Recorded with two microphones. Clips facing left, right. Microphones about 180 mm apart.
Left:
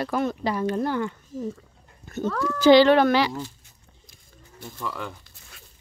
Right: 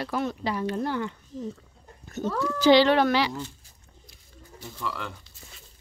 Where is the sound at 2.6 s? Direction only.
50° left (ahead or behind).